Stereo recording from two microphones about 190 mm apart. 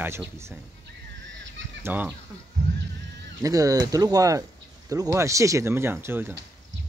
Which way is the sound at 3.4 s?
20° right (ahead or behind).